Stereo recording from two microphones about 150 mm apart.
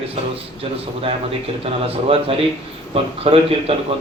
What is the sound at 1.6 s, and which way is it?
Speech, 40° right (ahead or behind).